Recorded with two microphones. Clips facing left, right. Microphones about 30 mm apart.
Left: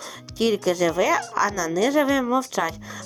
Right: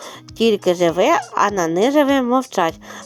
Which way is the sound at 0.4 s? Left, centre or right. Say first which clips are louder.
Right 6 dB; right.